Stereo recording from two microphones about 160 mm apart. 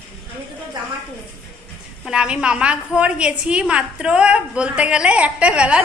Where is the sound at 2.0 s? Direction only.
5° right (ahead or behind).